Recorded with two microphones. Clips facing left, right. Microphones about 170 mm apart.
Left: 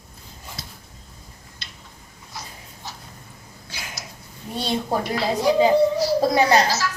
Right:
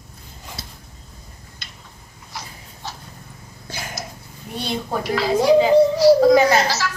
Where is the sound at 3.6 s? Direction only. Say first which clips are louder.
Right 6 dB; 45° right (ahead or behind).